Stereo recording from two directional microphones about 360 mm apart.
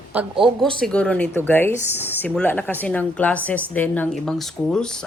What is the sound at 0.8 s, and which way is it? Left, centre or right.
Speech, centre.